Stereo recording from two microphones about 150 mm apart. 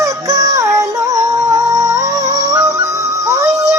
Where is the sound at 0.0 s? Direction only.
20° right (ahead or behind).